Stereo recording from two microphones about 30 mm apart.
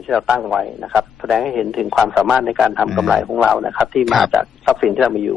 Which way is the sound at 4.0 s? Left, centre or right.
Centre.